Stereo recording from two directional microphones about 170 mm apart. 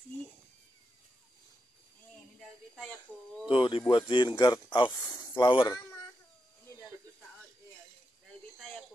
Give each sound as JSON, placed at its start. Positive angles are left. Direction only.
{"t": 2.7, "sound": "speech", "side_deg": 0}
{"t": 3.4, "sound": "speech", "side_deg": 30}
{"t": 8.5, "sound": "a sound", "side_deg": 5}